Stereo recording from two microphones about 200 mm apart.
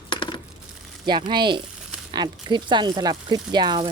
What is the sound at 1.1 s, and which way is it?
Speech, 20° right (ahead or behind).